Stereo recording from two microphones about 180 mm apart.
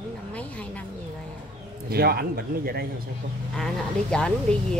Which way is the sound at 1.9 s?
60° right (ahead or behind).